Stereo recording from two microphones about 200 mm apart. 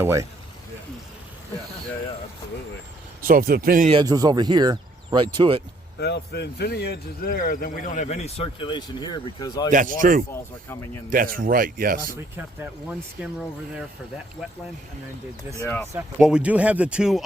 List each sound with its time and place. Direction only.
0.0 s speech: 15° right (ahead or behind)
3.2 s speech: 45° right (ahead or behind)
4.0 s speech: 20° right (ahead or behind)
6.0 s speech: 55° left (ahead or behind); by 9.7 s 20° left (ahead or behind)
9.7 s speech: 40° right (ahead or behind)
15.6 s speech: 10° left (ahead or behind)
15.9 s speech: 10° right (ahead or behind)